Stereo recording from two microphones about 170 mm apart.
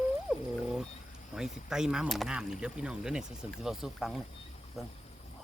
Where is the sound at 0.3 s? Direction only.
Centre (ahead or behind).